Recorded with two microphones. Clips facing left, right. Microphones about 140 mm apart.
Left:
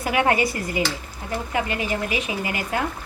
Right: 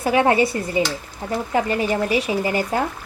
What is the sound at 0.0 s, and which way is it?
Speech, 30° right (ahead or behind).